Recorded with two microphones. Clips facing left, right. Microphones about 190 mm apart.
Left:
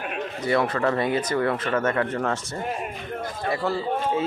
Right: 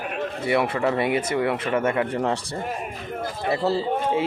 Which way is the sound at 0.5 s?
10° right (ahead or behind).